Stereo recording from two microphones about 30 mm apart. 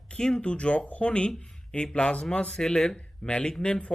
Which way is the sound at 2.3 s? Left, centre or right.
Left.